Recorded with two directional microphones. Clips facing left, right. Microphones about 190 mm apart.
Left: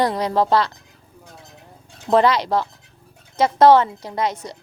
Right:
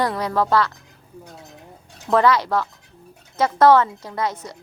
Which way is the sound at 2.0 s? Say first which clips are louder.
Left 1 dB; 15° left (ahead or behind).